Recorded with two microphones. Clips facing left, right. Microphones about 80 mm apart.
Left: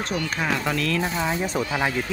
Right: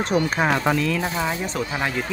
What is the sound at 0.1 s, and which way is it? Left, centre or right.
Speech, right.